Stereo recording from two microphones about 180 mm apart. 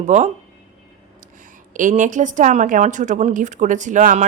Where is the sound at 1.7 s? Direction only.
45° right (ahead or behind).